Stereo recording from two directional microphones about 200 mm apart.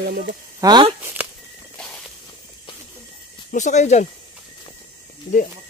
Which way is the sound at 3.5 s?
35° left (ahead or behind).